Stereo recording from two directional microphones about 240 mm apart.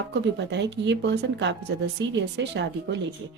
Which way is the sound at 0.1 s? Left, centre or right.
Right.